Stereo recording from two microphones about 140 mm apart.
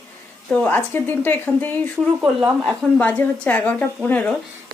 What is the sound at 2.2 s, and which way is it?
Speech, 5° right (ahead or behind).